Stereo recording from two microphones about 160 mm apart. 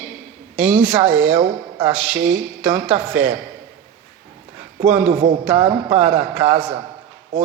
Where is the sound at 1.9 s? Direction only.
5° right (ahead or behind).